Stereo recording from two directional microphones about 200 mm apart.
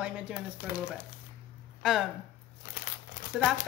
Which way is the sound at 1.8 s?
Centre (ahead or behind).